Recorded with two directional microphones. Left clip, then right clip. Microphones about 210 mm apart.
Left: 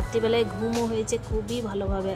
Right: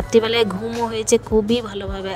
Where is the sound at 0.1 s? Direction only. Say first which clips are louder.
Right 7 dB; 50° right (ahead or behind).